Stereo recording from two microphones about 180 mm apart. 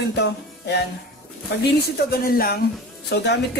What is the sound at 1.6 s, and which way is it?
Speech, 55° left (ahead or behind).